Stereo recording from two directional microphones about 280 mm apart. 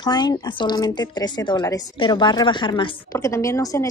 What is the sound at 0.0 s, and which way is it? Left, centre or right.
A woman's voice, centre.